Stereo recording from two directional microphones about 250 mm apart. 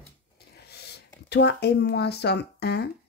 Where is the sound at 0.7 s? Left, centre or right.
Left.